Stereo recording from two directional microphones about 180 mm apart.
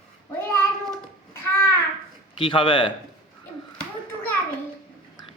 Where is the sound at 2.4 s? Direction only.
30° left (ahead or behind).